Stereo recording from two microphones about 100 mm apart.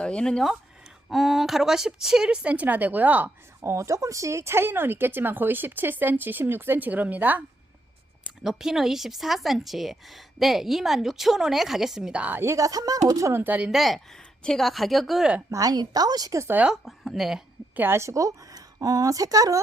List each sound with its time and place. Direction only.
0.0 s speech: 10° left (ahead or behind); by 3.3 s 15° right (ahead or behind)
3.6 s speech: 30° right (ahead or behind)
8.4 s a woman's voice: 5° right (ahead or behind)
12.4 s speech: 30° right (ahead or behind)
13.4 s speech: 15° right (ahead or behind)
13.7 s a woman's voice: centre (ahead or behind)
15.4 s speech: 35° right (ahead or behind)
16.5 s speech: 15° right (ahead or behind)
16.7 s a woman's voice: centre (ahead or behind)
17.7 s a woman's voice: 25° right (ahead or behind)